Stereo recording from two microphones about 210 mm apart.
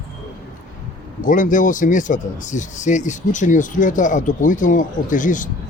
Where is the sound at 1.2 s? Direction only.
40° left (ahead or behind).